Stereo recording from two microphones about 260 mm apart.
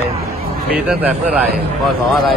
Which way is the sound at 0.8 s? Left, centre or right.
Centre.